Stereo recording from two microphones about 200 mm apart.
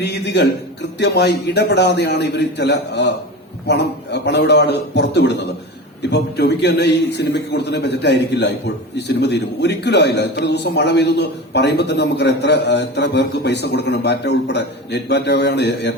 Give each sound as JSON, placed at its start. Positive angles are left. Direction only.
{"t": 0.0, "sound": "a man's voice", "side_deg": 60}